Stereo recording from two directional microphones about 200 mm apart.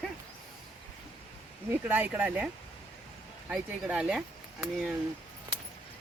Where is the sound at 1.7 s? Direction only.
10° right (ahead or behind).